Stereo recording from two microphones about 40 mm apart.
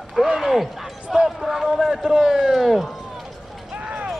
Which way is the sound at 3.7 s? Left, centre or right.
Right.